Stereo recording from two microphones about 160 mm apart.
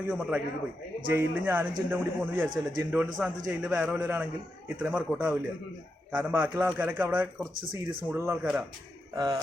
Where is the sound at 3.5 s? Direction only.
5° right (ahead or behind).